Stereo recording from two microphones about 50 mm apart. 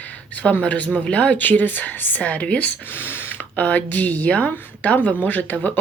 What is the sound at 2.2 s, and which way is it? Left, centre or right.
Speech, left.